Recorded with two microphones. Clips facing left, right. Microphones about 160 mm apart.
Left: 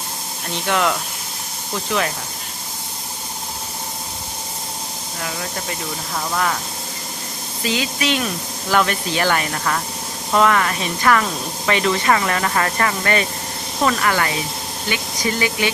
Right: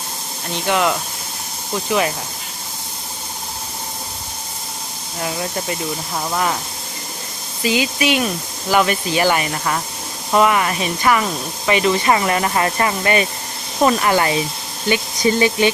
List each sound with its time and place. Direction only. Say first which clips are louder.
0.7 s speech: right 2 dB; 5° right (ahead or behind)
6.3 s speech: right 1 dB; 15° right (ahead or behind)
7.6 s speech: right 4 dB; 10° right (ahead or behind)
15.4 s speech: right 5 dB; 25° right (ahead or behind)